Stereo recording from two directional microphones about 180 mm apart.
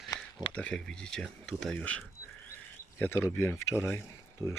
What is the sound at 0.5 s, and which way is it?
Speech, 5° left (ahead or behind).